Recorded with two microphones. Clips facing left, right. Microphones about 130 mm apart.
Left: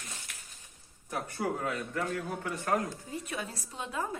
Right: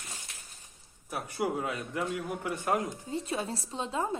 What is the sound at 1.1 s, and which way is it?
A man's voice, 10° right (ahead or behind).